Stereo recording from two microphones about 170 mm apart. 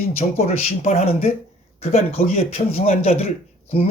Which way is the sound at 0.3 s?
40° left (ahead or behind).